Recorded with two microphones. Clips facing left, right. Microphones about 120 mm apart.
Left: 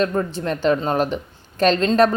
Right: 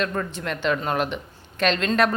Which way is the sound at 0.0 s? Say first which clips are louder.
Left 6 dB; 30° left (ahead or behind).